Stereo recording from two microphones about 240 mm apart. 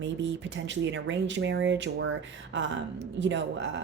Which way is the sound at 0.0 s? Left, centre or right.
Right.